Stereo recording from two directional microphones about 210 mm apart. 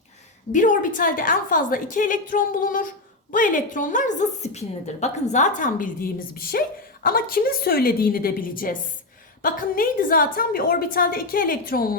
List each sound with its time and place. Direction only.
0.5 s a woman's voice: 40° left (ahead or behind)